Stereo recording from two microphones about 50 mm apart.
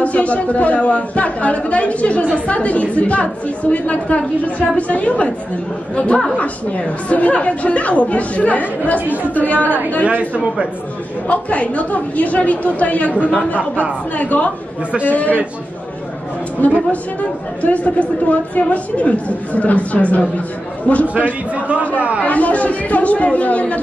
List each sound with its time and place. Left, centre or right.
0.0 s a woman's voice: left
5.9 s a woman's voice: centre
9.0 s speech: right
9.3 s speech: left
10.1 s a man's voice: right
11.2 s a woman's voice: left
16.9 s a woman's voice: left
21.1 s a man's voice: right
22.2 s a woman's voice: left